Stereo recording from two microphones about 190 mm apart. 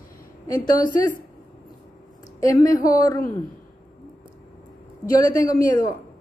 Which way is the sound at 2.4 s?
15° left (ahead or behind).